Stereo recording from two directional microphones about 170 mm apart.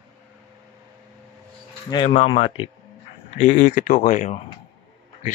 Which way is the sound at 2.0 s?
35° left (ahead or behind).